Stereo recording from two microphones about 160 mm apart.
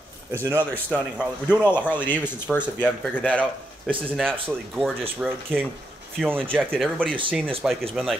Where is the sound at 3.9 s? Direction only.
35° right (ahead or behind).